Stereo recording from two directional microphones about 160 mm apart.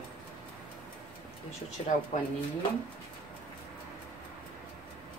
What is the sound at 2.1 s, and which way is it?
Speech, 45° left (ahead or behind).